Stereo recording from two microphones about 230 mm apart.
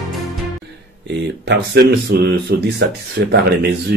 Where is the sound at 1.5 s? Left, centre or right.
Right.